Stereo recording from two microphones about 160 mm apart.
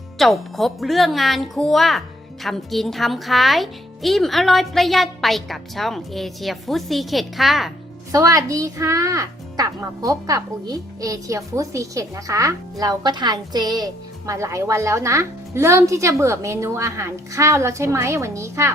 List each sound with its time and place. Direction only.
0.2 s speech: centre (ahead or behind)
8.1 s a woman's voice: 20° right (ahead or behind)